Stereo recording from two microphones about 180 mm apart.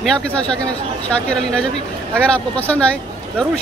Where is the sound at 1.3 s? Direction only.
5° left (ahead or behind).